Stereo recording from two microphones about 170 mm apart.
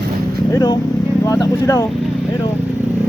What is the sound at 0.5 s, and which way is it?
Speech, 25° left (ahead or behind).